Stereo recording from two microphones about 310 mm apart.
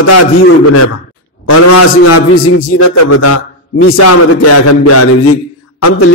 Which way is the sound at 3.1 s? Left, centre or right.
Left.